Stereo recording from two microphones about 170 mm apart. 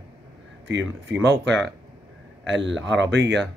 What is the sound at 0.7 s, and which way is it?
Speech, 90° right.